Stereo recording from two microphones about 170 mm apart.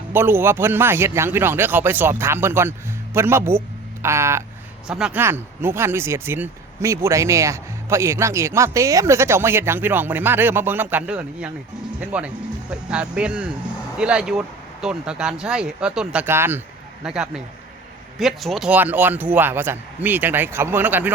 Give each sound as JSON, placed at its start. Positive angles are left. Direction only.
{"t": 0.1, "sound": "speech", "side_deg": -15}
{"t": 4.9, "sound": "speech", "side_deg": -5}